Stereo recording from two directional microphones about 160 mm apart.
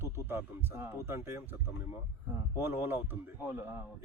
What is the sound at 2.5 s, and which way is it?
Speech, 15° right (ahead or behind).